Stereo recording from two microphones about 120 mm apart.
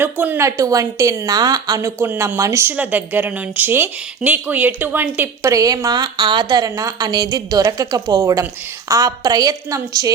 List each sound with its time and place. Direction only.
0.0 s a woman's voice: 15° right (ahead or behind); by 1.8 s 35° right (ahead or behind)
1.8 s a woman's voice: 20° right (ahead or behind)
2.7 s a woman's voice: 15° right (ahead or behind); by 10.1 s 30° right (ahead or behind)